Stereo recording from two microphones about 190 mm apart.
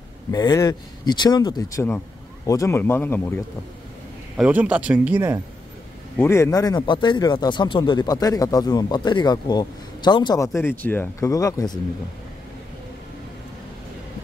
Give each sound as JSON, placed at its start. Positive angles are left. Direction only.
{"t": 0.3, "sound": "speech", "side_deg": 20}
{"t": 4.4, "sound": "speech", "side_deg": -5}
{"t": 6.1, "sound": "speech", "side_deg": 15}